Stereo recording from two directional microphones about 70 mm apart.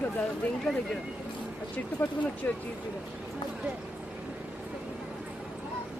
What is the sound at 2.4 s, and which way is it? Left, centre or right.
Speech, left.